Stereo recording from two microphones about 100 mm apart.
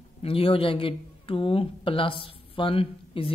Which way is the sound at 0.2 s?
70° left (ahead or behind).